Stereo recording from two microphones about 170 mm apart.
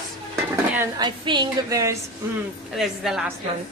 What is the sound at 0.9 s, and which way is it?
A woman's voice, 25° right (ahead or behind).